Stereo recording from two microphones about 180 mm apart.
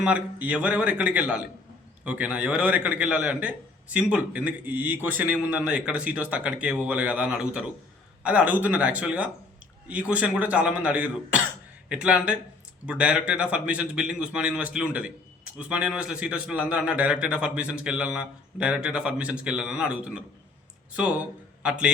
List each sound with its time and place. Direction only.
0.0 s a man's voice: 5° right (ahead or behind)